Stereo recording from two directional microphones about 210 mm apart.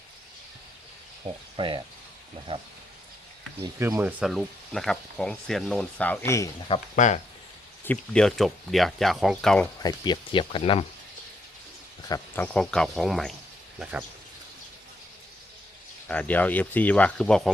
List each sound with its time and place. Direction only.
1.2 s speech: 25° right (ahead or behind)
3.6 s speech: 15° right (ahead or behind); by 6.5 s 15° left (ahead or behind)
6.7 s speech: 30° left (ahead or behind)
7.9 s speech: 5° left (ahead or behind)
9.8 s speech: 20° left (ahead or behind)
12.0 s speech: 15° left (ahead or behind)
12.5 s speech: 5° left (ahead or behind)
16.0 s speech: 5° left (ahead or behind)